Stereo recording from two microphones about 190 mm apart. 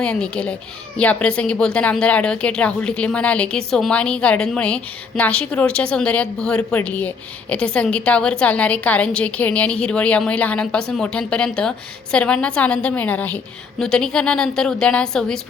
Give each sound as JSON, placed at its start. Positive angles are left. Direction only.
{"t": 0.0, "sound": "speech", "side_deg": 5}